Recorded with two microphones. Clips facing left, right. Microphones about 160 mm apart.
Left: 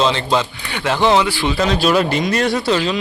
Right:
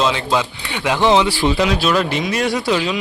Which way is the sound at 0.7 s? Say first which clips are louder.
Even; 15° right (ahead or behind).